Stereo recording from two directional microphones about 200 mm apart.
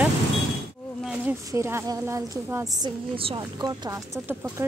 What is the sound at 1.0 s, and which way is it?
A woman's voice, 10° right (ahead or behind).